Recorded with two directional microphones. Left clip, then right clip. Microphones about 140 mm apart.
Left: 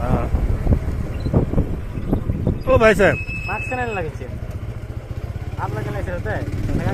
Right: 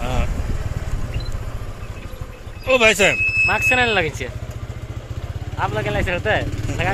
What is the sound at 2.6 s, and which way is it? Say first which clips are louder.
Speech: even; 35° left (ahead or behind).